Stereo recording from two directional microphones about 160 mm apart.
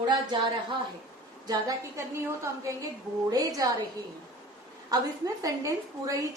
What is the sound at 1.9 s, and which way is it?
Speech, 15° right (ahead or behind).